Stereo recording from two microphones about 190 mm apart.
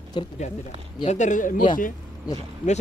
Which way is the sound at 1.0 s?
40° left (ahead or behind).